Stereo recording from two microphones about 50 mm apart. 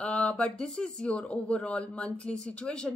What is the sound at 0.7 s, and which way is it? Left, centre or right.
Speech, centre.